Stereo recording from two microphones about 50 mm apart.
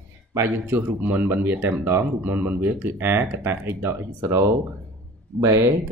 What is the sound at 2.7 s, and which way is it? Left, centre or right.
Speech, right.